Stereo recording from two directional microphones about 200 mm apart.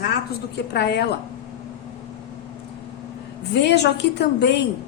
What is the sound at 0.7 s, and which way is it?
Speech, 55° left (ahead or behind).